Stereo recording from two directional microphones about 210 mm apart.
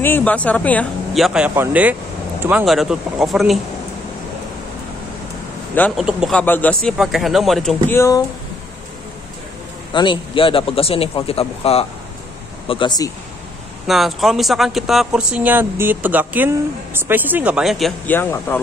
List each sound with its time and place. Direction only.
0.0 s speech: 10° left (ahead or behind)
5.8 s speech: centre (ahead or behind)
7.9 s speech: 15° left (ahead or behind)
9.9 s a man's voice: 25° left (ahead or behind)
13.8 s speech: centre (ahead or behind)